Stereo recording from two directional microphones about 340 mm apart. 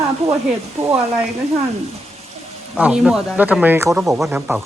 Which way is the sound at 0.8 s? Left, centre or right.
Centre.